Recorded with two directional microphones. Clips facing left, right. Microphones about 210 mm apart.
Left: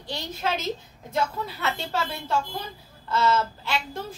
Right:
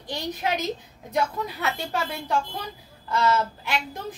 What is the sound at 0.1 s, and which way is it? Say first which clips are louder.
A woman's voice: right 1 dB; 15° right (ahead or behind).